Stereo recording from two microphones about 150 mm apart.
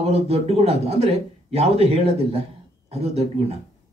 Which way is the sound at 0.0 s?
45° right (ahead or behind).